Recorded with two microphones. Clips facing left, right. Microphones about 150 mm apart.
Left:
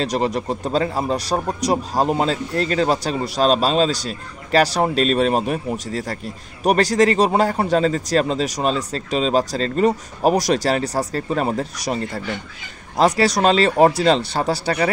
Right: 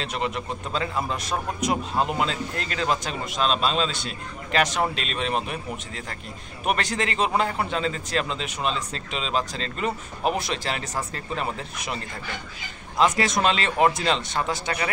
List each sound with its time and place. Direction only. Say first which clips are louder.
0.0 s speech: left 8 dB; 35° left (ahead or behind)